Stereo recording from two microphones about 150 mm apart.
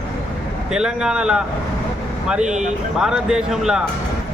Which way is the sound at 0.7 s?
5° right (ahead or behind).